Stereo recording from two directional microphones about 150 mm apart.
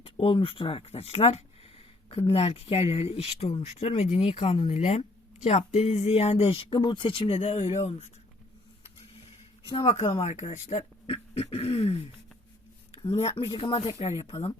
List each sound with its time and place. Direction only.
0.0 s speech: 40° left (ahead or behind)
9.6 s speech: 40° left (ahead or behind)